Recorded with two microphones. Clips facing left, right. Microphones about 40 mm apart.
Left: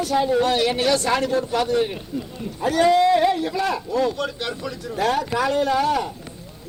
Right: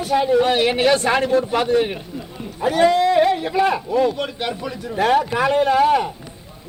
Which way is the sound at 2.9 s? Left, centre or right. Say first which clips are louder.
Even; centre.